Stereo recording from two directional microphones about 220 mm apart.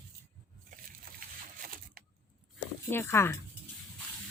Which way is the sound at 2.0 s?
40° right (ahead or behind).